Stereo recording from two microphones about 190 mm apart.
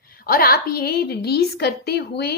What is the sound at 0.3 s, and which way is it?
A woman's voice, 55° left (ahead or behind).